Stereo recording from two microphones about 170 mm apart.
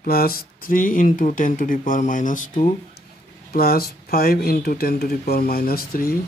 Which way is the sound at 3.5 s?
65° left (ahead or behind).